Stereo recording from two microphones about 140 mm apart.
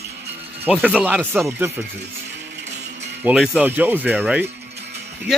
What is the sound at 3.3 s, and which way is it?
Speech, centre (ahead or behind).